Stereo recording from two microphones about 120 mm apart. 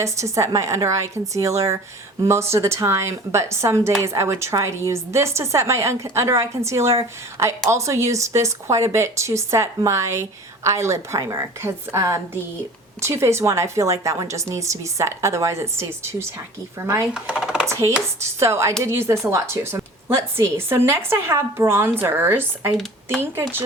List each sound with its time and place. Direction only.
0.0 s a woman's voice: 25° right (ahead or behind)
17.2 s speech: 5° right (ahead or behind)
17.7 s a woman's voice: 25° right (ahead or behind)